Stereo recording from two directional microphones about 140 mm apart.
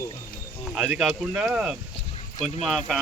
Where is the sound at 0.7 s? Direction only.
Centre (ahead or behind).